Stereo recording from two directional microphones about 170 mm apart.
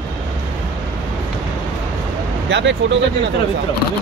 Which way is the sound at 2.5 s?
90° right.